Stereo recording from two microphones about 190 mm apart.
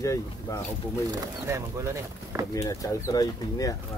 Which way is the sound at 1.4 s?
15° right (ahead or behind).